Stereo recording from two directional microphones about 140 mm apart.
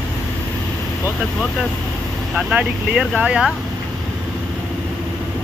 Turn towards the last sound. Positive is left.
turn(degrees=-5)  # may be behind; listen again after turning